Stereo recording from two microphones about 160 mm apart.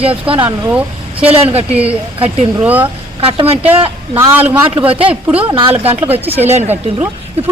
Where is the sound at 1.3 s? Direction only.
40° right (ahead or behind).